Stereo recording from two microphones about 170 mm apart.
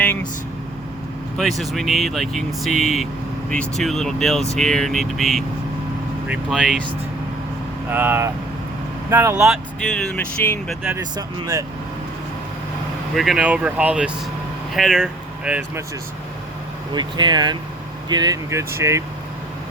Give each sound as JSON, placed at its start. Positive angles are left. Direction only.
{"t": 0.0, "sound": "vehicle", "side_deg": 5}
{"t": 1.4, "sound": "speech", "side_deg": 0}
{"t": 7.9, "sound": "speech", "side_deg": -10}
{"t": 10.2, "sound": "speech", "side_deg": 10}
{"t": 13.1, "sound": "speech", "side_deg": 0}
{"t": 16.9, "sound": "speech", "side_deg": -25}